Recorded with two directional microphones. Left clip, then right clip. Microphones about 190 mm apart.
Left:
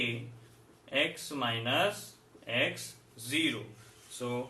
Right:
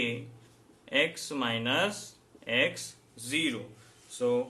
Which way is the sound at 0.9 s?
55° right (ahead or behind).